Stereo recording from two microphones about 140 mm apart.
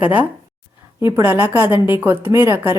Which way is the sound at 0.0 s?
10° right (ahead or behind).